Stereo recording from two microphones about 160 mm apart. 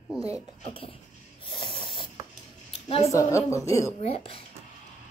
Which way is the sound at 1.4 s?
30° left (ahead or behind).